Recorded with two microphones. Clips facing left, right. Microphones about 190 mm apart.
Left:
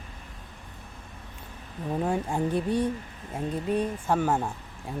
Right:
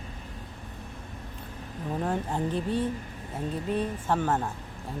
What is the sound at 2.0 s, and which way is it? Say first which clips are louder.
Speech: left 2 dB; 10° left (ahead or behind).